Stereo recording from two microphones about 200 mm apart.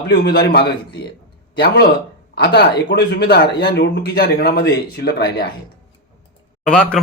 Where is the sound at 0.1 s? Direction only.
50° left (ahead or behind).